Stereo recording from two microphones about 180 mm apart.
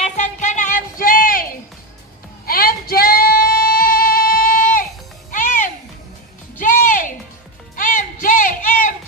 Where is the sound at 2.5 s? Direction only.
55° left (ahead or behind).